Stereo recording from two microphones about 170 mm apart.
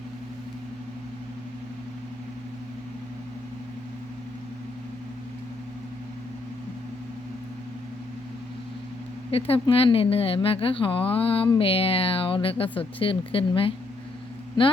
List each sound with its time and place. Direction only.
9.3 s speech: 35° left (ahead or behind)